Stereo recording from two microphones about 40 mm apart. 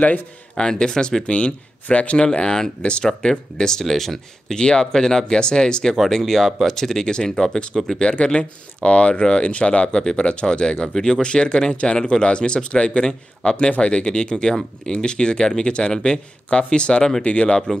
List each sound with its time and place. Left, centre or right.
0.6 s speech: centre
2.1 s speech: centre
2.8 s speech: left; by 4.6 s centre
4.6 s speech: left
8.0 s speech: left